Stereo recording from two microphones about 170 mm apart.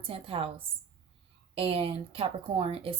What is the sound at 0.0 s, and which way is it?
Speech, 35° right (ahead or behind).